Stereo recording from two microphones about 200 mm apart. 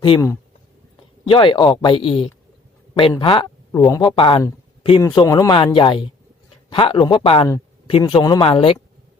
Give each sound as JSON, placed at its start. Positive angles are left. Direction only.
{"t": 0.0, "sound": "speech", "side_deg": 20}
{"t": 7.4, "sound": "a sound", "side_deg": 15}
{"t": 7.9, "sound": "speech", "side_deg": 20}